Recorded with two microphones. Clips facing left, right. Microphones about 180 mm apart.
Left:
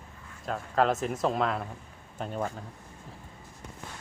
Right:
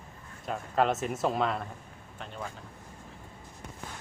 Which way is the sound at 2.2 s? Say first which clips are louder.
Left 8 dB; 45° left (ahead or behind).